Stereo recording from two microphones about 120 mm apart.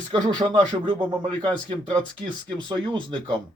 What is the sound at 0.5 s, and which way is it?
Speech, 40° right (ahead or behind).